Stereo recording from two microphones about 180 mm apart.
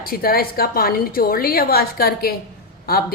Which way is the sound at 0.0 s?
55° left (ahead or behind).